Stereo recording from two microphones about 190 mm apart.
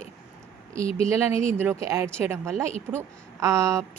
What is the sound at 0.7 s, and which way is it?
Speech, 30° left (ahead or behind).